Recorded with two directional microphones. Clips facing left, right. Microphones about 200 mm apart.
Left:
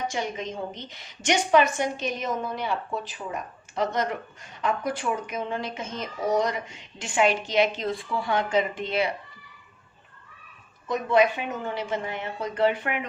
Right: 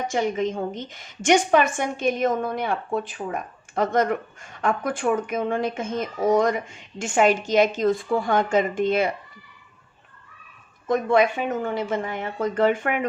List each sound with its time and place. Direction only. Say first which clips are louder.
0.1 s speech: right 7 dB; 50° right (ahead or behind)
10.8 s speech: right 2 dB; 50° right (ahead or behind)